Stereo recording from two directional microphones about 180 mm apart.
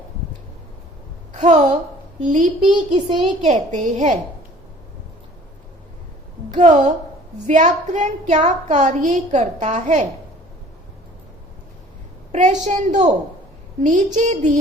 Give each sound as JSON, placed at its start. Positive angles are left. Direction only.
{"t": 1.3, "sound": "a woman's voice", "side_deg": -40}
{"t": 2.6, "sound": "a child's voice", "side_deg": -30}
{"t": 3.7, "sound": "a woman's voice", "side_deg": -40}
{"t": 6.5, "sound": "a woman's voice", "side_deg": -45}
{"t": 12.3, "sound": "a woman's voice", "side_deg": -40}